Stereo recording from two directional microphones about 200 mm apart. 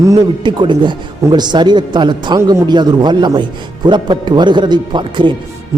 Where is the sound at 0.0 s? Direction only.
20° right (ahead or behind).